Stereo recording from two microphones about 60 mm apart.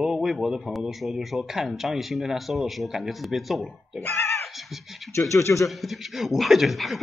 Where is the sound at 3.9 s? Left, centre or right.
Left.